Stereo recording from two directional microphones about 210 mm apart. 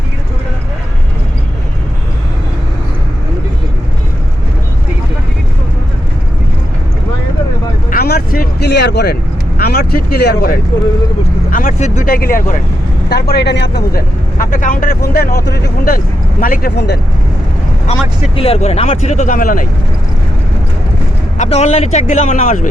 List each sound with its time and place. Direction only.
7.9 s vehicle: 50° left (ahead or behind)
9.6 s speech: 45° left (ahead or behind)
11.5 s speech: 35° left (ahead or behind)
18.3 s speech: 30° left (ahead or behind)
21.3 s speech: 35° left (ahead or behind)